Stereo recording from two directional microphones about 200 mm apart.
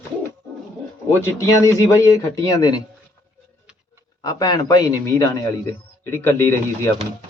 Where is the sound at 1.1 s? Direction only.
15° left (ahead or behind).